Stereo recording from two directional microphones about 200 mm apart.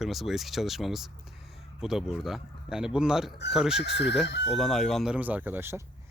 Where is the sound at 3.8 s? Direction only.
60° left (ahead or behind).